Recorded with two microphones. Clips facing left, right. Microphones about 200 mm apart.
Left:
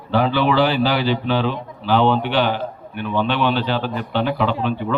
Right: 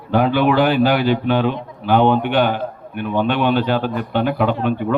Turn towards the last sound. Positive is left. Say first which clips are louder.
# right 3 dB
turn(degrees=-50)  # may be behind; listen again after turning